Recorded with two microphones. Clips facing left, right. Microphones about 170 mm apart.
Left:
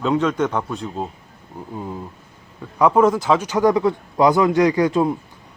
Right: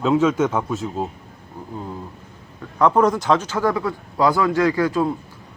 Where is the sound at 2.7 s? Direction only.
5° left (ahead or behind).